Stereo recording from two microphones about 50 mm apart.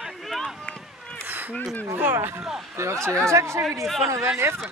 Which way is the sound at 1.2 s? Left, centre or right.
Right.